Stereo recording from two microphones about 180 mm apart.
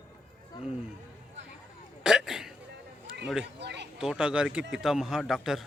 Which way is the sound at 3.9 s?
5° right (ahead or behind).